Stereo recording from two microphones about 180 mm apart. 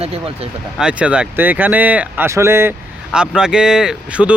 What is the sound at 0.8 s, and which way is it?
Speech, 5° right (ahead or behind).